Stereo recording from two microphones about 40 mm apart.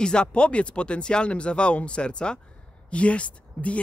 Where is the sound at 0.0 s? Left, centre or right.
Left.